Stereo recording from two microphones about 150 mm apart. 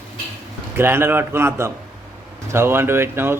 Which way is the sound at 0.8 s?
15° right (ahead or behind).